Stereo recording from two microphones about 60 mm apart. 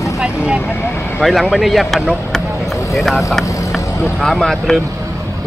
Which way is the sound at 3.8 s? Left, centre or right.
Left.